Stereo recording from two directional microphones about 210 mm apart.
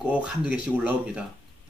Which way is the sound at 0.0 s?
5° right (ahead or behind).